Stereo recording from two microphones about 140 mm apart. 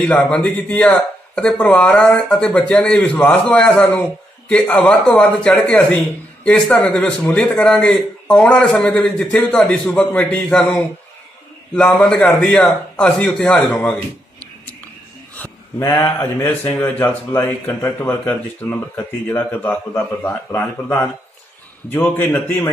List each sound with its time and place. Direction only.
0.0 s a man's voice: 5° left (ahead or behind)
15.8 s mantra: 25° left (ahead or behind)
16.7 s a man's voice: 15° left (ahead or behind)
22.1 s a man's voice: 15° left (ahead or behind)